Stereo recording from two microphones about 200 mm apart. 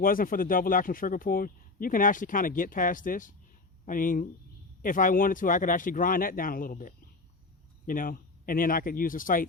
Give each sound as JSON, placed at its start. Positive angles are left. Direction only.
{"t": 0.0, "sound": "a man's voice", "side_deg": 45}